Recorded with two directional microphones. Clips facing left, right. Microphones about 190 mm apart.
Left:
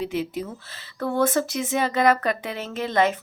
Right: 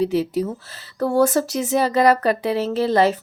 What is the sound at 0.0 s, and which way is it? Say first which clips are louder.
A woman's voice: right 7 dB; 35° right (ahead or behind).